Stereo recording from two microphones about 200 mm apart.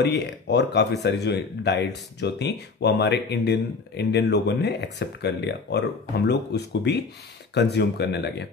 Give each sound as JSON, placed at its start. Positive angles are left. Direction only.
{"t": 0.0, "sound": "speech", "side_deg": 55}